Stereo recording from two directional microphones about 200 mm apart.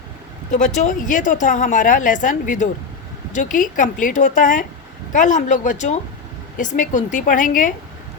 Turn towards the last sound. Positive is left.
turn(degrees=40)  # may be behind; listen again after turning